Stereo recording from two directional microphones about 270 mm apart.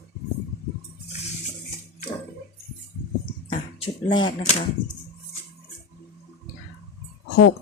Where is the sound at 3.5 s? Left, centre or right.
Centre.